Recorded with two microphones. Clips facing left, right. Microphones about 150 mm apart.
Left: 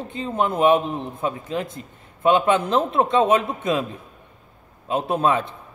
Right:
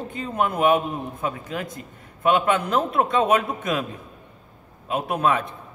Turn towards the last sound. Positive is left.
turn(degrees=30)  # may be behind; listen again after turning